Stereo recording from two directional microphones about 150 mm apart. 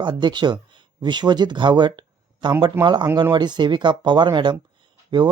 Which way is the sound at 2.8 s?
15° right (ahead or behind).